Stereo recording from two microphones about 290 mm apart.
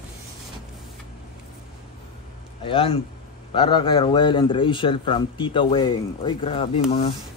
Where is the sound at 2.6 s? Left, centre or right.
Centre.